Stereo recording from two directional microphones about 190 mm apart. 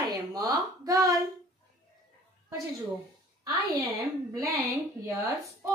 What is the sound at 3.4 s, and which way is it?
Speech, 15° right (ahead or behind).